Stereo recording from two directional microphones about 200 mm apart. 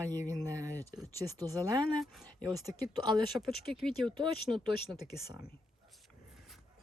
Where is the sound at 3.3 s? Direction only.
Centre (ahead or behind).